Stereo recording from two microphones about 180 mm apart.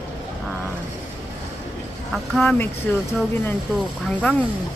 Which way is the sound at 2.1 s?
Centre (ahead or behind).